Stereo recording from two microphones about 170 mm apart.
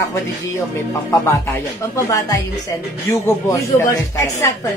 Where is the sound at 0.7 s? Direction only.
15° left (ahead or behind).